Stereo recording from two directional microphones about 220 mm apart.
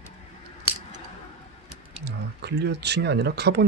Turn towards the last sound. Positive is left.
turn(degrees=-50)  # may be behind; listen again after turning